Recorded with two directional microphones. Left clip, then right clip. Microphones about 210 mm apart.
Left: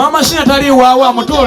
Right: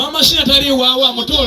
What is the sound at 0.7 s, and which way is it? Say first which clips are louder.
Speech: left 7 dB; 25° left (ahead or behind).